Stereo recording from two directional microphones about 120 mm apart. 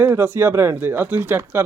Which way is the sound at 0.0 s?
15° right (ahead or behind).